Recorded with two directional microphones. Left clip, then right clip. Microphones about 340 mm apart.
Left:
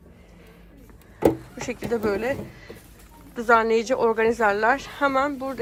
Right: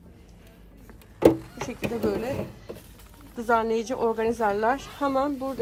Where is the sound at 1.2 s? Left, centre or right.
Centre.